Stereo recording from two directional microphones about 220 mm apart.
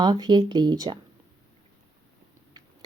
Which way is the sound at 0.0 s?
20° right (ahead or behind).